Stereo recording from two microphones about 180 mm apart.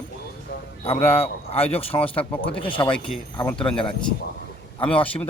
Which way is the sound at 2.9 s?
5° left (ahead or behind).